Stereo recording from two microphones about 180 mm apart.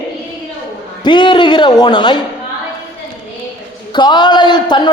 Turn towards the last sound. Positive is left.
turn(degrees=25)  # may be behind; listen again after turning